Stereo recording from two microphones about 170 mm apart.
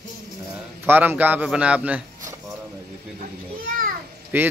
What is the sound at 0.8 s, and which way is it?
A man's voice, 10° right (ahead or behind).